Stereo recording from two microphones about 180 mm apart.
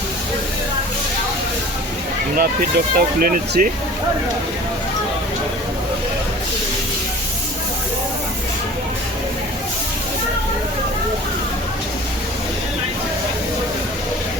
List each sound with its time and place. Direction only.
2.3 s speech: 55° right (ahead or behind)